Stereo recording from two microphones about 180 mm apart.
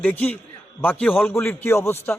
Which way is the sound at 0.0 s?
10° left (ahead or behind).